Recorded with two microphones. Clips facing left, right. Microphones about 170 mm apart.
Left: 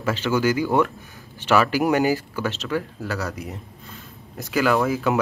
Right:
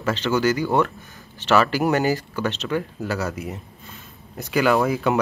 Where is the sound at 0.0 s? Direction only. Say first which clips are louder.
Even; 10° left (ahead or behind).